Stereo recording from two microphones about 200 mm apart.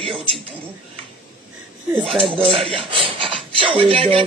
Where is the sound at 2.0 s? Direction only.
25° right (ahead or behind).